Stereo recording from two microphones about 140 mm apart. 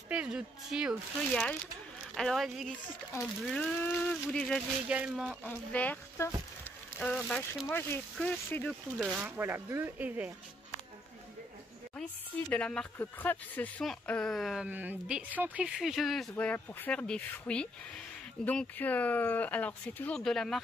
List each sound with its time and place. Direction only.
0.1 s speech: 5° right (ahead or behind)
1.3 s speech: 5° left (ahead or behind)
4.8 s speech: 10° right (ahead or behind)
5.4 s speech: 10° left (ahead or behind)
8.9 s speech: 5° right (ahead or behind)
12.0 s speech: 5° left (ahead or behind)
16.3 s speech: 10° left (ahead or behind)